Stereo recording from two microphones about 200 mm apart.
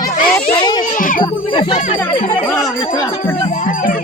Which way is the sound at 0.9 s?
40° left (ahead or behind).